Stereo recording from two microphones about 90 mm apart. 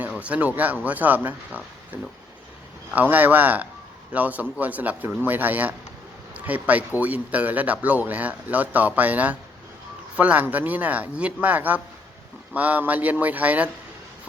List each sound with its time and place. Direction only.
0.0 s speech: 15° right (ahead or behind)